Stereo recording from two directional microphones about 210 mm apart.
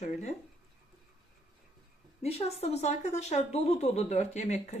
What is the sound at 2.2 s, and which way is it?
Speech, 30° left (ahead or behind).